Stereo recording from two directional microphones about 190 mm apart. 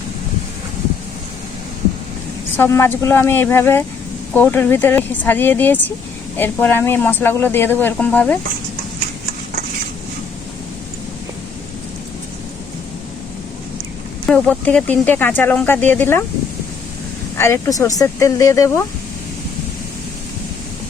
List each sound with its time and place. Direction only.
2.6 s speech: 15° left (ahead or behind)
14.3 s speech: 5° left (ahead or behind)
17.3 s speech: 15° left (ahead or behind)